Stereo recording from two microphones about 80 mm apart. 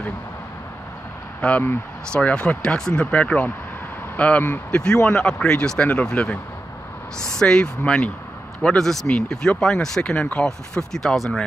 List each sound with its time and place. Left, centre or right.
1.4 s speech: centre